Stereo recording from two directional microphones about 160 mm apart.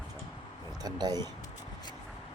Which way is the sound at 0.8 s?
25° right (ahead or behind).